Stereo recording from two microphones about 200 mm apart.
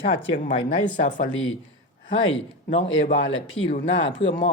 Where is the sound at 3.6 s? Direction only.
30° left (ahead or behind).